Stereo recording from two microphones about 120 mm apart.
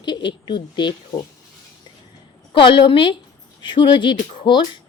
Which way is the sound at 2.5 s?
45° left (ahead or behind).